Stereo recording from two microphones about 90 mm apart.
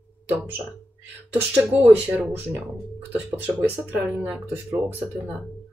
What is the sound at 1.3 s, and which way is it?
Speech, 20° right (ahead or behind).